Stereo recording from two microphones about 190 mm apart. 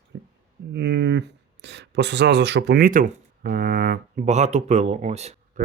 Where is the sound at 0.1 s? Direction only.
65° right (ahead or behind).